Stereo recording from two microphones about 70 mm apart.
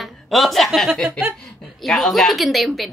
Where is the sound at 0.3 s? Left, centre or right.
Centre.